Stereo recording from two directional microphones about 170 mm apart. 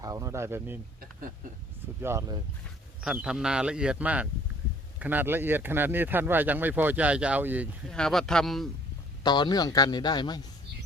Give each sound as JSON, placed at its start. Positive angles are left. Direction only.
{"t": 0.0, "sound": "speech", "side_deg": -20}
{"t": 2.0, "sound": "speech", "side_deg": -15}
{"t": 3.0, "sound": "a man's voice", "side_deg": -5}
{"t": 7.9, "sound": "a man's voice", "side_deg": 5}
{"t": 9.2, "sound": "a man's voice", "side_deg": 25}